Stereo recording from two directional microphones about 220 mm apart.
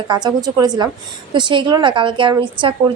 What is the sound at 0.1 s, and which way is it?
A woman's voice, 20° right (ahead or behind).